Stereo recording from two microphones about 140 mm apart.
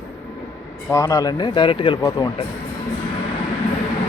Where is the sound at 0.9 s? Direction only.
20° left (ahead or behind).